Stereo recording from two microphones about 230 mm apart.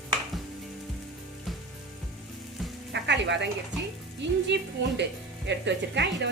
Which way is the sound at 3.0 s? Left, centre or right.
Right.